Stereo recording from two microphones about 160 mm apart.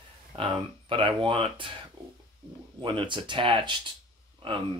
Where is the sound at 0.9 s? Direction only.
30° right (ahead or behind).